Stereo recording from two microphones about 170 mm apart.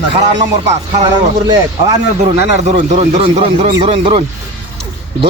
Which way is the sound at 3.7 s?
30° right (ahead or behind).